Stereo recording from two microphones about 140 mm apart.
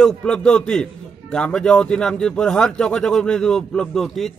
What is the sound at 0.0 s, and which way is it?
Speech, 5° left (ahead or behind).